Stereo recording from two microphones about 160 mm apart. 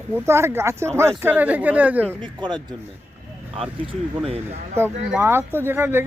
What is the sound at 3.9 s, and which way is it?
Speech, 35° right (ahead or behind).